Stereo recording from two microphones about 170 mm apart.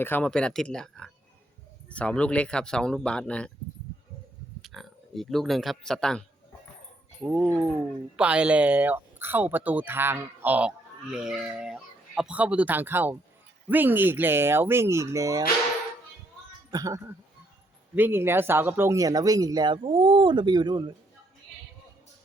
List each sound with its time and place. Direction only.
0.0 s speech: 10° left (ahead or behind)
4.6 s speech: centre (ahead or behind)
7.3 s speech: 10° right (ahead or behind)
16.7 s speech: 20° right (ahead or behind)